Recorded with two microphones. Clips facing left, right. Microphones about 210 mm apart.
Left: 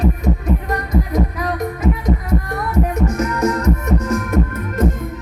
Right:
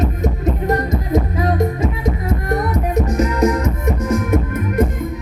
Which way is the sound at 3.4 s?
10° right (ahead or behind).